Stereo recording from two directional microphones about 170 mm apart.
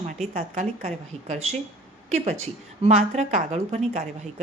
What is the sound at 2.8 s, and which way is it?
Speech, 40° right (ahead or behind).